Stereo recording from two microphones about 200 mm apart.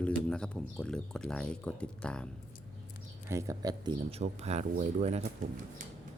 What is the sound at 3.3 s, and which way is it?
Speech, 15° right (ahead or behind).